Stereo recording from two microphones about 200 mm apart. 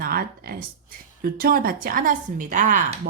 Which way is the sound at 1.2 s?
45° right (ahead or behind).